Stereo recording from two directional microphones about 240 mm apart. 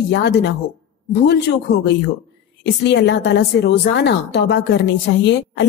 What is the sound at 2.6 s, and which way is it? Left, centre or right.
A woman's voice, left.